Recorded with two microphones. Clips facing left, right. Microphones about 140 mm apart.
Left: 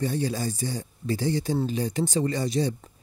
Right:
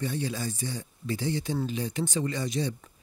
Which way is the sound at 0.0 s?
40° left (ahead or behind).